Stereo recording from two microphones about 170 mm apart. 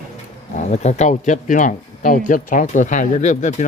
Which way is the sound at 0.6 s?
40° left (ahead or behind).